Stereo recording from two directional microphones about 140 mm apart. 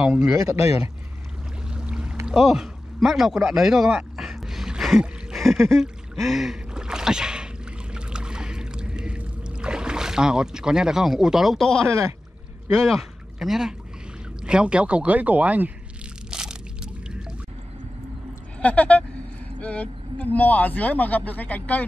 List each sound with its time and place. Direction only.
0.0 s speech: 5° right (ahead or behind)
0.6 s speech: 50° left (ahead or behind)
1.7 s music: 5° right (ahead or behind)
2.2 s a sound: 5° right (ahead or behind)
5.8 s gasp: centre (ahead or behind)
7.9 s pour: 5° right (ahead or behind)
11.9 s speech: 20° right (ahead or behind)
12.8 s speech: centre (ahead or behind)
16.3 s a sound: 5° right (ahead or behind)
18.6 s speech: 10° left (ahead or behind)